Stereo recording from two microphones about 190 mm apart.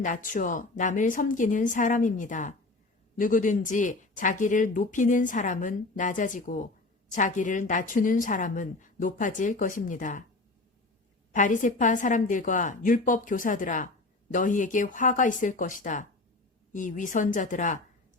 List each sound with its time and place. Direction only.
0.0 s speech: 45° left (ahead or behind)
11.3 s speech: 40° left (ahead or behind)